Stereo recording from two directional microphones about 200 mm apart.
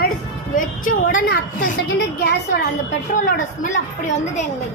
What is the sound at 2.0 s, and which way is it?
Speech, 55° left (ahead or behind).